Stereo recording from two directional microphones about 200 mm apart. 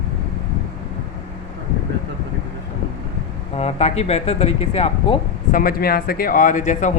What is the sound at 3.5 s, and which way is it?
A man's voice, 30° left (ahead or behind).